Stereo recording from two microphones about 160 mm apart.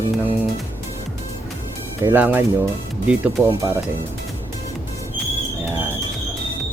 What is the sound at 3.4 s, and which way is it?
Speech, 10° left (ahead or behind).